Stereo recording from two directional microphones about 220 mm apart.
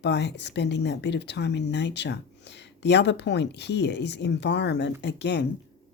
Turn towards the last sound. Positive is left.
turn(degrees=50)  # may be behind; listen again after turning